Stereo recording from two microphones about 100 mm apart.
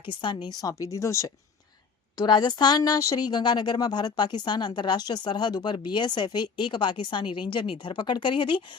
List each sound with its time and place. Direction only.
0.0 s a woman's voice: 50° left (ahead or behind); by 1.3 s 30° left (ahead or behind)
2.1 s speech: 45° left (ahead or behind)